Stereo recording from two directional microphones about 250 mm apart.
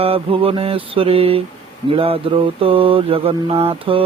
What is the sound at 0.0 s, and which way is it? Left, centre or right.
Mantra, right.